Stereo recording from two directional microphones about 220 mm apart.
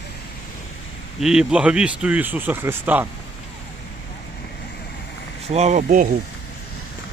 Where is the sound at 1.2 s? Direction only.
5° right (ahead or behind).